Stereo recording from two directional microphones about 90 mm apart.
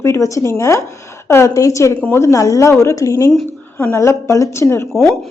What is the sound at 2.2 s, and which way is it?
Speech, 35° left (ahead or behind).